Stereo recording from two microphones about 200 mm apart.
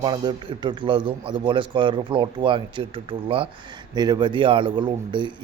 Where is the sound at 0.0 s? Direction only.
25° right (ahead or behind).